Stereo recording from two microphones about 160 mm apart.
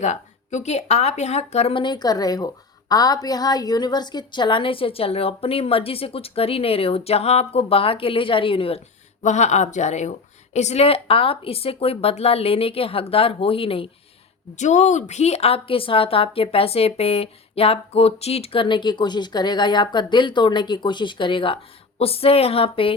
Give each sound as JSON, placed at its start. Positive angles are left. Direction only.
{"t": 0.0, "sound": "a woman's voice", "side_deg": 45}
{"t": 9.2, "sound": "a woman's voice", "side_deg": 45}
{"t": 14.5, "sound": "a woman's voice", "side_deg": 50}